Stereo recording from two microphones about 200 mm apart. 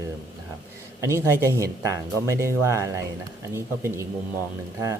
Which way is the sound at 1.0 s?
15° right (ahead or behind).